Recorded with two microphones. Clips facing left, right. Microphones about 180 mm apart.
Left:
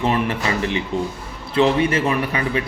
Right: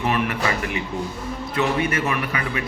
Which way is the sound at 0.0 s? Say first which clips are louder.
Left 2 dB; 30° left (ahead or behind).